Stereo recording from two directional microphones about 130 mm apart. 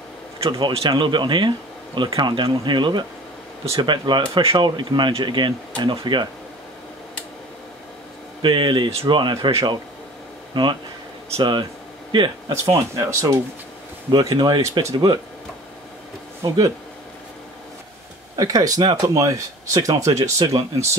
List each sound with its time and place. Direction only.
0.4 s speech: 40° right (ahead or behind)
8.4 s speech: 40° right (ahead or behind)
12.6 s speech: 25° right (ahead or behind)
14.3 s speech: 40° right (ahead or behind)
14.6 s speech: 25° right (ahead or behind)
16.4 s speech: 30° right (ahead or behind)
18.3 s speech: 30° right (ahead or behind)